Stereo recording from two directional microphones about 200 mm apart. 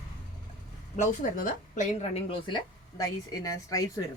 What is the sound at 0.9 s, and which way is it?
Speech, 40° left (ahead or behind).